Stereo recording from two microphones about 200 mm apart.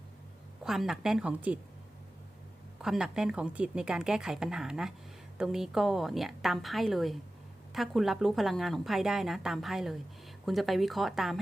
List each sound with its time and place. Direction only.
0.6 s a woman's voice: centre (ahead or behind)
2.8 s a woman's voice: 5° right (ahead or behind)